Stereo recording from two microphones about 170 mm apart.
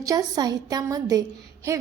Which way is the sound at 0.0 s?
20° right (ahead or behind).